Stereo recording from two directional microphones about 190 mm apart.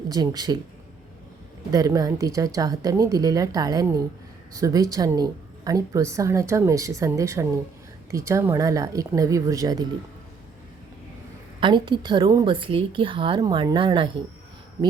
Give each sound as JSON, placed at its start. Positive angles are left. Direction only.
{"t": 0.1, "sound": "a woman's voice", "side_deg": -20}
{"t": 1.7, "sound": "a woman's voice", "side_deg": -20}
{"t": 11.6, "sound": "a woman's voice", "side_deg": -25}